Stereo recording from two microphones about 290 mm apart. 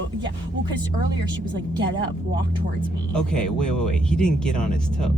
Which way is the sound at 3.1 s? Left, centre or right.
Centre.